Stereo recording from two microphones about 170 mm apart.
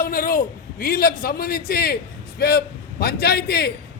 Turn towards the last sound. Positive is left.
turn(degrees=70)  # may be behind; listen again after turning